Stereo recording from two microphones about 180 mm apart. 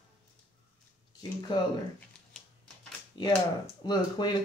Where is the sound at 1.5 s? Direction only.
25° left (ahead or behind).